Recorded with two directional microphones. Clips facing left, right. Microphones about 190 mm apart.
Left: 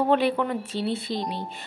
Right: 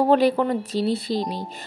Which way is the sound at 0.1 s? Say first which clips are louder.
Right 4 dB; 40° right (ahead or behind).